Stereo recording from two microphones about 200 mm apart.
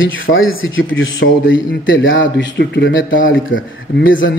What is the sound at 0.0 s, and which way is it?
A man's voice, 75° left (ahead or behind).